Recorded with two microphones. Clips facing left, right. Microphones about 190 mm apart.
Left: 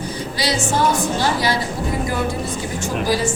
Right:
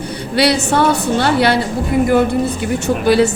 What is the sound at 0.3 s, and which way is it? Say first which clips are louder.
Speech: right 7 dB; 65° right (ahead or behind).